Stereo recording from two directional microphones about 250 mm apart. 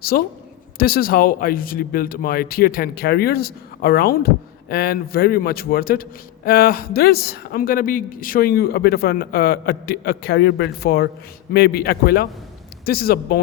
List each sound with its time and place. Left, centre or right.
0.1 s a man's voice: left